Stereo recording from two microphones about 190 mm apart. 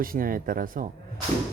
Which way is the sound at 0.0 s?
45° right (ahead or behind).